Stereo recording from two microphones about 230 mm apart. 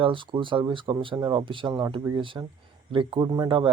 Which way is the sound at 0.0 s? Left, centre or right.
Right.